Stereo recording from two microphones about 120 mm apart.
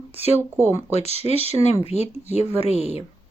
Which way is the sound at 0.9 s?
65° left (ahead or behind).